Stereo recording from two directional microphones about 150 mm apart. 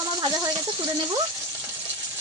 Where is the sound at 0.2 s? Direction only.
25° right (ahead or behind).